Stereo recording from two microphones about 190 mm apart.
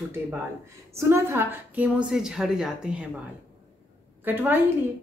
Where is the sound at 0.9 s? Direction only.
15° right (ahead or behind).